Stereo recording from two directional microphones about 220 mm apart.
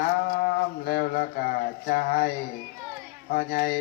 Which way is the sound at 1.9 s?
45° left (ahead or behind).